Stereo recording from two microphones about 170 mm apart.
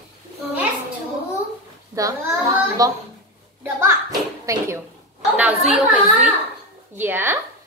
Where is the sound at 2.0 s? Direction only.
20° right (ahead or behind).